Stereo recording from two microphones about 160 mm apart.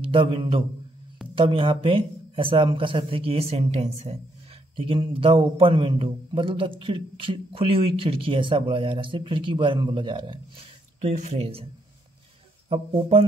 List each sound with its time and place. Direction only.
0.1 s a man's voice: 35° right (ahead or behind)
11.0 s speech: 50° right (ahead or behind)
12.6 s a man's voice: 35° right (ahead or behind)